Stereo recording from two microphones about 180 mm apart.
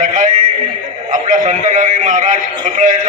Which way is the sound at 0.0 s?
45° right (ahead or behind).